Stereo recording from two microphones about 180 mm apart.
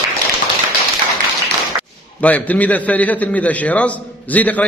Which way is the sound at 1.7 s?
20° right (ahead or behind).